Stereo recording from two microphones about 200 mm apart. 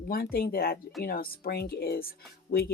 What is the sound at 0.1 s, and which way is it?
Speech, 45° left (ahead or behind).